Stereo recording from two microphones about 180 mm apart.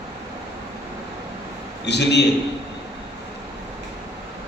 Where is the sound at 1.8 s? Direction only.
70° left (ahead or behind).